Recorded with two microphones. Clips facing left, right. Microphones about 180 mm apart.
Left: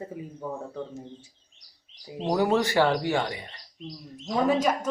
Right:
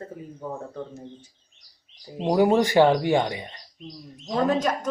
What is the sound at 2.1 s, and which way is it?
Speech, 10° right (ahead or behind).